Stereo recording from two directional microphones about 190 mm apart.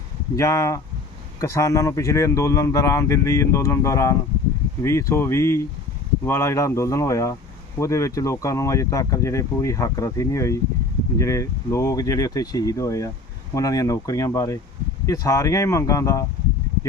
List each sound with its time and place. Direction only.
0.3 s speech: 15° left (ahead or behind)